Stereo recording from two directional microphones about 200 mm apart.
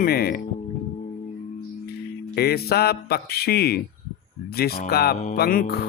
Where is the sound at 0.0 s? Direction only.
50° left (ahead or behind).